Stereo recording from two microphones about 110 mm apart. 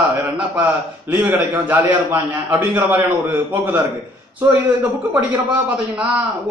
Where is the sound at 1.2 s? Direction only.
15° right (ahead or behind).